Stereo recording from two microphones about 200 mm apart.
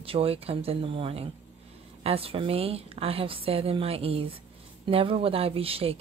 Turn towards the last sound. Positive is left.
turn(degrees=-30)  # may be behind; listen again after turning